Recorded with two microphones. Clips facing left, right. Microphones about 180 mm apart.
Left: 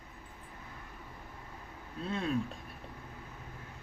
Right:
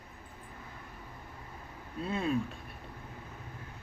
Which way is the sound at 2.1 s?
5° right (ahead or behind).